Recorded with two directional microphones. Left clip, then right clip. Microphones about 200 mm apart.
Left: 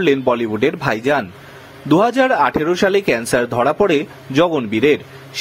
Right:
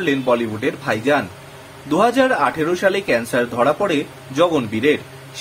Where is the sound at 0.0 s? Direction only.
40° left (ahead or behind).